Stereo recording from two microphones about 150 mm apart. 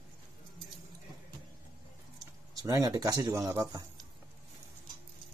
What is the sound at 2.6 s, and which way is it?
Speech, 25° right (ahead or behind).